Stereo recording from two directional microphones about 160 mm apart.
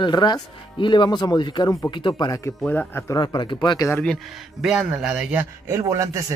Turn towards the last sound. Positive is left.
turn(degrees=-20)  # may be behind; listen again after turning